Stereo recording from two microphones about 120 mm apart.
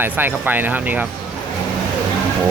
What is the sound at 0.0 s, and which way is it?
Speech, 15° right (ahead or behind).